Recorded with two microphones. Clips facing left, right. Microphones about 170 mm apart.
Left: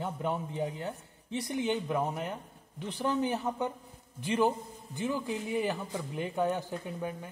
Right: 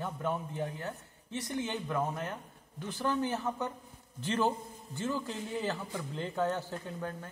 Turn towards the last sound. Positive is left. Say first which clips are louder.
# left 2 dB
turn(degrees=15)  # may be behind; listen again after turning